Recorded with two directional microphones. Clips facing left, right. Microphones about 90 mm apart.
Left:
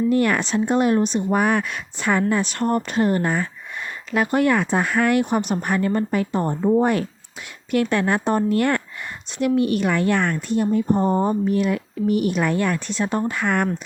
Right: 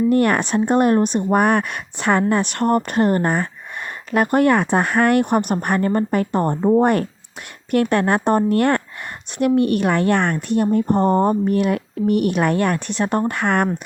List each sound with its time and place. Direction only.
0.1 s speech: 50° right (ahead or behind)